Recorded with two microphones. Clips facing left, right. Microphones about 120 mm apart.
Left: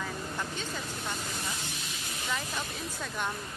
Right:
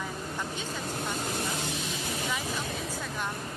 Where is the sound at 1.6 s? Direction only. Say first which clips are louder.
Right 7 dB; 90° right.